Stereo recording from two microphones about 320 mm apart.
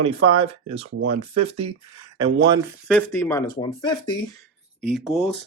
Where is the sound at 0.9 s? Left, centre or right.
Right.